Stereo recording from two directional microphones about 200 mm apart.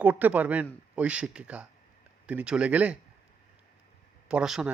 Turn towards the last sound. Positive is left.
turn(degrees=-5)  # may be behind; listen again after turning